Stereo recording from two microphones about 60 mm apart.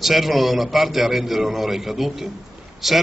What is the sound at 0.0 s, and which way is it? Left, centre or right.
A man's voice, centre.